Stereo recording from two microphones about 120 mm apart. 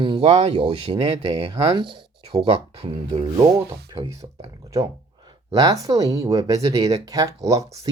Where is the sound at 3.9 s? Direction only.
30° right (ahead or behind).